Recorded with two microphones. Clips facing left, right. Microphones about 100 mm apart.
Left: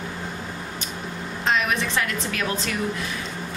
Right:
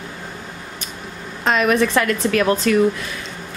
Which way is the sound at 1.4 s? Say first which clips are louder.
Right 7 dB; 60° right (ahead or behind).